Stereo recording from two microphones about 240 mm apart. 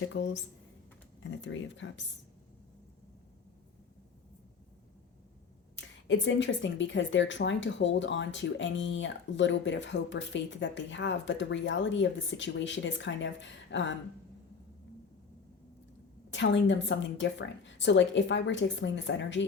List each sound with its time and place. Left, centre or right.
0.1 s speech: left
5.7 s speech: left
16.3 s speech: left